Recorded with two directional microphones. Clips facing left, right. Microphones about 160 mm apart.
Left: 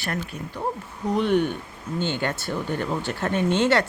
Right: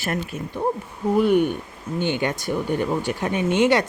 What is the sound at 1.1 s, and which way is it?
Speech, 5° right (ahead or behind).